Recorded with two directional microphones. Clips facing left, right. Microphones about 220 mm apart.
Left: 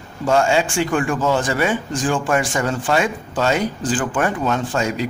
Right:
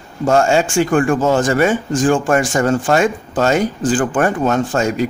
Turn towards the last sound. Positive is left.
turn(degrees=-45)  # may be behind; listen again after turning